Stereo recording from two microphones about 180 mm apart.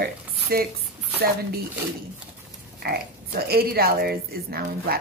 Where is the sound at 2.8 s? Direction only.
60° right (ahead or behind).